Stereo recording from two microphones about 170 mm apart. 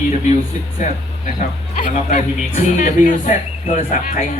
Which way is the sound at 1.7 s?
45° left (ahead or behind).